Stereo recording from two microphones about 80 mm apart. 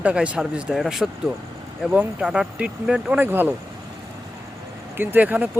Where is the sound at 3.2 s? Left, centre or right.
Right.